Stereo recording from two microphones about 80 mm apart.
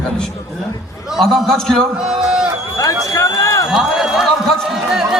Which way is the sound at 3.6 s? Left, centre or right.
Centre.